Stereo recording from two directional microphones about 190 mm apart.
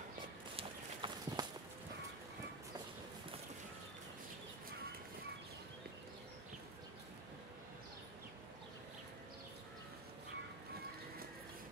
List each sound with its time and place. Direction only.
0.6 s walk: 25° right (ahead or behind)